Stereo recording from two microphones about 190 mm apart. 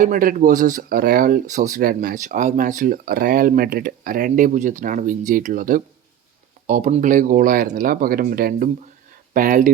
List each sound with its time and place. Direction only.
0.0 s speech: 45° right (ahead or behind)